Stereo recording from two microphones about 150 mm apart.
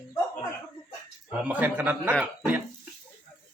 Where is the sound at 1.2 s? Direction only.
10° right (ahead or behind).